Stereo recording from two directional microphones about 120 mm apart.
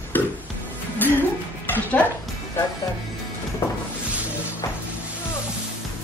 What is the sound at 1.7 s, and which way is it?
Speech, 15° left (ahead or behind).